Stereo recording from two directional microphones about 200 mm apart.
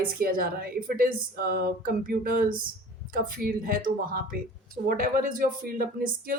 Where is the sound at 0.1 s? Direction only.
45° right (ahead or behind).